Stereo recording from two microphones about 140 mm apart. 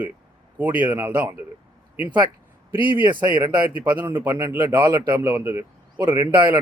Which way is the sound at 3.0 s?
35° right (ahead or behind).